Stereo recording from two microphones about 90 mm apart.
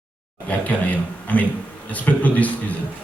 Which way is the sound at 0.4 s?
15° left (ahead or behind).